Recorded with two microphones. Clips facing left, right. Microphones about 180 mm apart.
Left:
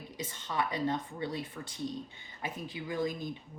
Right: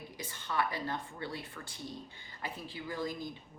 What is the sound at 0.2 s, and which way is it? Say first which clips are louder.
A woman's voice: left 1 dB; 20° left (ahead or behind).